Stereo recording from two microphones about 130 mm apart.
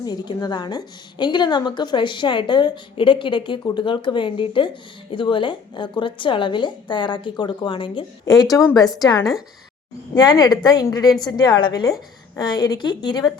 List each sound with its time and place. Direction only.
0.0 s a woman's voice: 30° left (ahead or behind)